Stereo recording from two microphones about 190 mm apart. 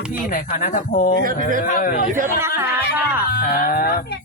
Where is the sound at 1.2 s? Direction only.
45° right (ahead or behind).